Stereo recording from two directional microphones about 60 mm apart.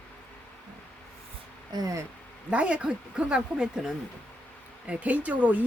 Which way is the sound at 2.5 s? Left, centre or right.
Centre.